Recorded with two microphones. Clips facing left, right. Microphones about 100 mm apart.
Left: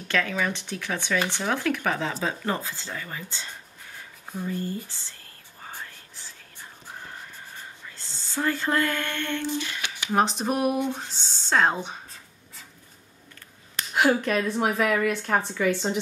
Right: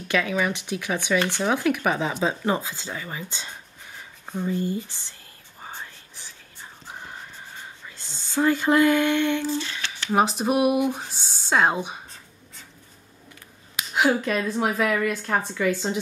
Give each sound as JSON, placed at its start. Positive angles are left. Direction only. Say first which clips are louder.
{"t": 0.1, "sound": "speech", "louder": "right 3 dB", "side_deg": -10}
{"t": 5.6, "sound": "whispering", "louder": "right 2 dB", "side_deg": -20}
{"t": 6.9, "sound": "a sound", "louder": "right 2 dB", "side_deg": -20}
{"t": 7.9, "sound": "speech", "louder": "right 6 dB", "side_deg": -15}
{"t": 9.5, "sound": "a sound", "louder": "right 2 dB", "side_deg": 15}
{"t": 10.1, "sound": "speech", "louder": "right 3 dB", "side_deg": -5}
{"t": 13.7, "sound": "a woman's voice", "louder": "even", "side_deg": -5}